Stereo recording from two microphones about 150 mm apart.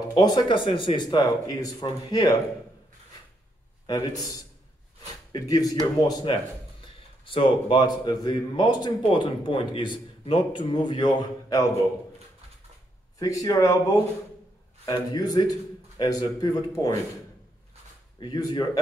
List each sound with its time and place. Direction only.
0.1 s a man's voice: 30° left (ahead or behind)
3.8 s a man's voice: 30° left (ahead or behind)
5.3 s a man's voice: 25° left (ahead or behind)
13.2 s a man's voice: 25° left (ahead or behind)
18.2 s a man's voice: 30° left (ahead or behind)